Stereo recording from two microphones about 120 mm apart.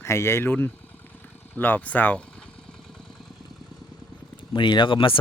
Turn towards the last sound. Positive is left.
turn(degrees=45)  # may be behind; listen again after turning